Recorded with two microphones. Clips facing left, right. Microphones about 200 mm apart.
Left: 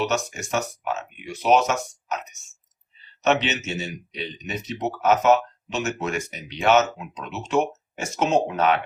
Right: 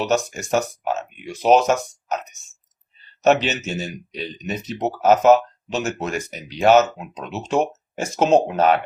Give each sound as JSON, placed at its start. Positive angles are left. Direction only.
{"t": 0.0, "sound": "speech", "side_deg": -35}
{"t": 3.2, "sound": "speech", "side_deg": -40}